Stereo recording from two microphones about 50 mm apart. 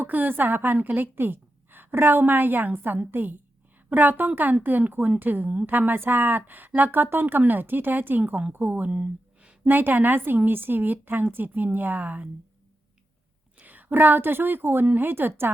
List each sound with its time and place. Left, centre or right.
0.0 s a woman's voice: right
9.6 s a woman's voice: right
13.6 s a woman's voice: right